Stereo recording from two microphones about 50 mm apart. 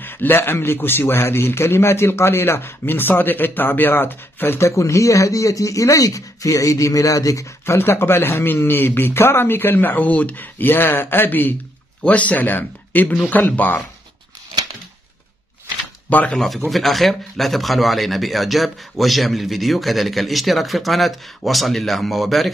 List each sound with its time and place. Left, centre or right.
0.0 s a man's voice: left
4.6 s a man's voice: left
12.0 s speech: left
16.3 s speech: centre